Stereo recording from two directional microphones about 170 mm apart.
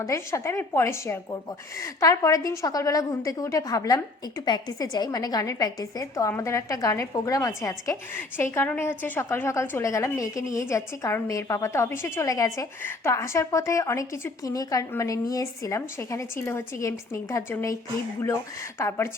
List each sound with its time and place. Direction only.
0.0 s a woman's voice: 15° left (ahead or behind)
18.8 s a woman's voice: 15° left (ahead or behind)